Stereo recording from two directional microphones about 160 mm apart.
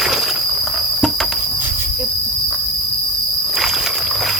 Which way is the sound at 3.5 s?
5° right (ahead or behind).